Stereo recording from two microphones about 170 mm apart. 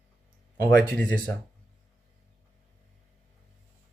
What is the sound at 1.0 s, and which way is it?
Speech, 10° left (ahead or behind).